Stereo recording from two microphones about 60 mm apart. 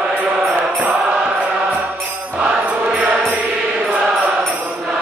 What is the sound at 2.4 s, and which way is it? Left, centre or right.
Music, right.